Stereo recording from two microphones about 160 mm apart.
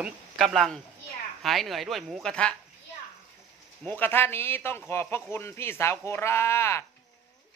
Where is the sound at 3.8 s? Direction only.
10° left (ahead or behind).